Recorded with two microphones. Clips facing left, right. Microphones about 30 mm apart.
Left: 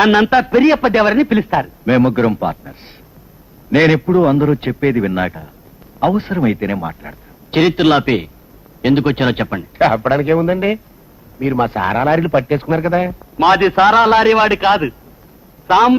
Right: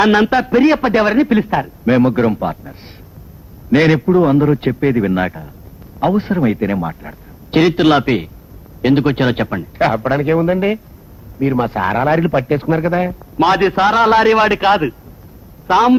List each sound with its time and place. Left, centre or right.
0.0 s a man's voice: centre